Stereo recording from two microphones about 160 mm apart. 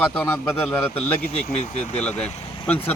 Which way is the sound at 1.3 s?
45° left (ahead or behind).